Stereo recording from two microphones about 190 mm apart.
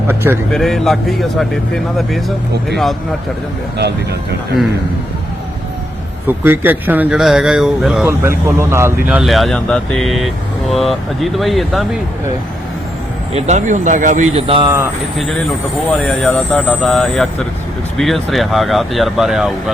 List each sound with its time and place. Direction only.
0.1 s speech: 10° right (ahead or behind)
0.5 s speech: centre (ahead or behind)
3.8 s speech: 60° right (ahead or behind)
6.2 s speech: 10° right (ahead or behind)
13.3 s speech: 40° right (ahead or behind)
14.3 s speech: 30° right (ahead or behind)
15.9 s speech: 5° left (ahead or behind)